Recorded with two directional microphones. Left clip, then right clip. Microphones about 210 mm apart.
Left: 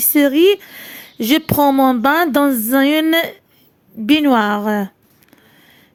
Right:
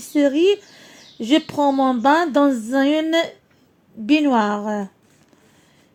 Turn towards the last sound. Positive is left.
turn(degrees=35)  # may be behind; listen again after turning